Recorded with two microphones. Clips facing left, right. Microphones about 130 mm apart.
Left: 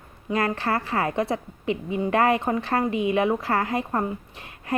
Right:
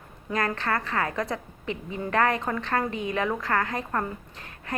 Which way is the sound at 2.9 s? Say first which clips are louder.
Left 7 dB; 35° right (ahead or behind).